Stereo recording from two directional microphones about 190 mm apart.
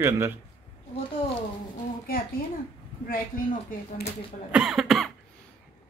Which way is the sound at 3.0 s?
45° left (ahead or behind).